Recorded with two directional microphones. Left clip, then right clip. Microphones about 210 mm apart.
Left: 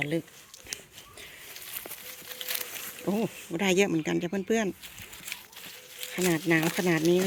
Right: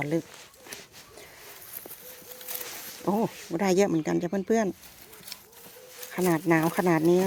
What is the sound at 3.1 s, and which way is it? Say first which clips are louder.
Speech: right 3 dB; 5° left (ahead or behind).